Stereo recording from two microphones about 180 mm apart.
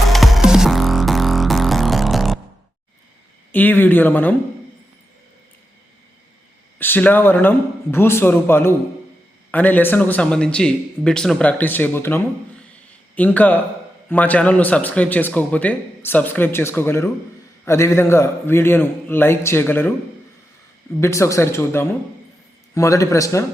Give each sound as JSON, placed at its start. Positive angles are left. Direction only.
{"t": 0.1, "sound": "music", "side_deg": 0}
{"t": 3.5, "sound": "a man's voice", "side_deg": 10}
{"t": 6.7, "sound": "a man's voice", "side_deg": 10}
{"t": 21.0, "sound": "a man's voice", "side_deg": 15}